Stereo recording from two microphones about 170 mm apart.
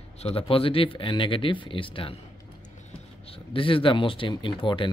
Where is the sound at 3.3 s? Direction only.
30° left (ahead or behind).